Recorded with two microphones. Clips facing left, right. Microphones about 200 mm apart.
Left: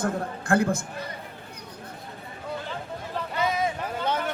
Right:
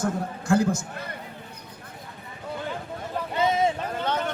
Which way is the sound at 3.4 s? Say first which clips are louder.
Right 4 dB; 25° right (ahead or behind).